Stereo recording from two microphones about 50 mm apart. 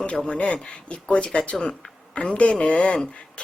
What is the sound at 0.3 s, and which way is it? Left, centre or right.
Speech, left.